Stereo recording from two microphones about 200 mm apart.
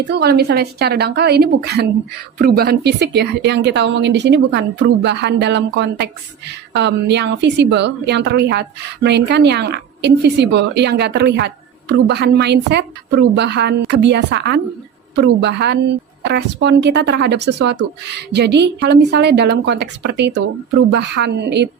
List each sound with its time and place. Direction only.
0.1 s a woman's voice: 55° right (ahead or behind)